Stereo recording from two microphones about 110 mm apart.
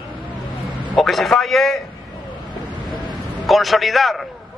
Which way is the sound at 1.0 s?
Centre (ahead or behind).